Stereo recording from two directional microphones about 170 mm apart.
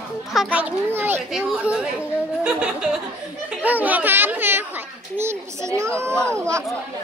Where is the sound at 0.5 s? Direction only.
10° right (ahead or behind).